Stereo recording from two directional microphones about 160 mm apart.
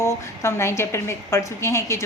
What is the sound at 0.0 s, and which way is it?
A woman's voice, 15° left (ahead or behind).